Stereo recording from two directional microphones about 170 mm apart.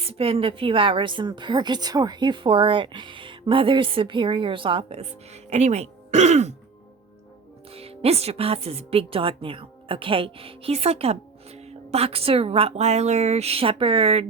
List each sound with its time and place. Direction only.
0.0 s a woman's voice: 35° right (ahead or behind)
7.7 s speech: 35° right (ahead or behind)